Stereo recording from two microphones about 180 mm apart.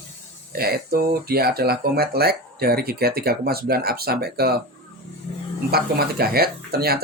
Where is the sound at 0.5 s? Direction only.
60° right (ahead or behind).